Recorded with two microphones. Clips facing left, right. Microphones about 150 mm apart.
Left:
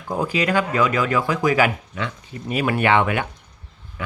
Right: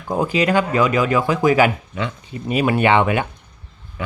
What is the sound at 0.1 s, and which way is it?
Speech, 25° right (ahead or behind).